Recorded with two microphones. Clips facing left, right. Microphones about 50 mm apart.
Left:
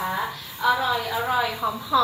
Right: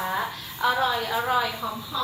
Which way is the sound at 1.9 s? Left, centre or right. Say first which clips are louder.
Left 10 dB; left.